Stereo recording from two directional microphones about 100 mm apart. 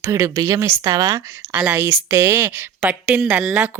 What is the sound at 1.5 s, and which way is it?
Speech, 20° right (ahead or behind).